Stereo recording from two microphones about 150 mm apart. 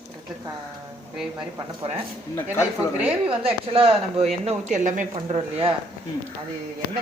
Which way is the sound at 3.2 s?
40° right (ahead or behind).